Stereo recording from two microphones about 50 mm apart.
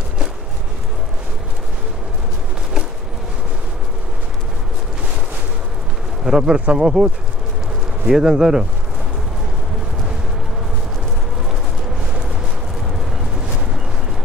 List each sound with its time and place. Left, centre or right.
6.2 s speech: centre
8.1 s speech: centre